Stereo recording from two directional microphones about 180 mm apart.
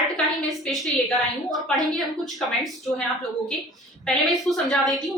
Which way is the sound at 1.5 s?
Centre (ahead or behind).